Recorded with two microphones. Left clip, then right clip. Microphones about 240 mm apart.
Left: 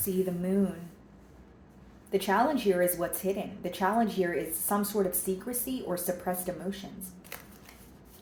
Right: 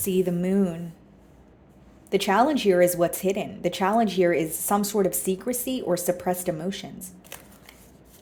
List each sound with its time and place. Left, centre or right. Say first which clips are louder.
0.3 s speech: right 5 dB; right
2.0 s speech: right 5 dB; right